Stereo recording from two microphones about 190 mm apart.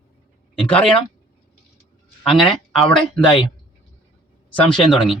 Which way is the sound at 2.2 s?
Centre (ahead or behind).